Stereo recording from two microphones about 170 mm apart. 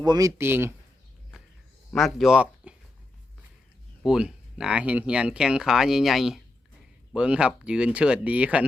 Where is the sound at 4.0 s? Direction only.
5° right (ahead or behind).